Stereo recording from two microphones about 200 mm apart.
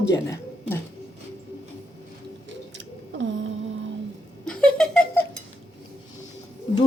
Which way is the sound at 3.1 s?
65° right (ahead or behind).